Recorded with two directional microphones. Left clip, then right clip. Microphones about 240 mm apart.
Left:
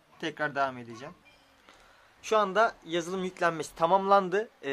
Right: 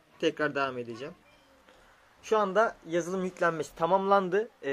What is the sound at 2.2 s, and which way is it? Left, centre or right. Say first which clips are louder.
Speech: left 1 dB; centre.